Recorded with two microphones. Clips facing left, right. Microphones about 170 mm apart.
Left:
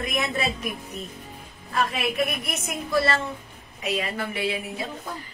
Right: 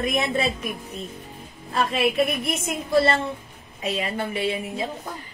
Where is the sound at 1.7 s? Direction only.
30° right (ahead or behind).